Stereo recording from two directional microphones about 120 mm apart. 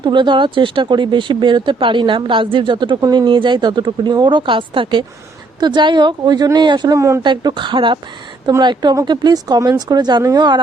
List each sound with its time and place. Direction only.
0.0 s speech: 40° right (ahead or behind)
7.2 s speech: 40° right (ahead or behind)